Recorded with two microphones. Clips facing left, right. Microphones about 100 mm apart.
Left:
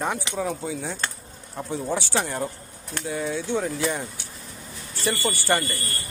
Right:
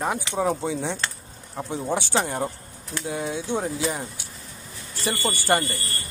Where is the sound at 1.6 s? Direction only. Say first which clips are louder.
Right 1 dB; 20° right (ahead or behind).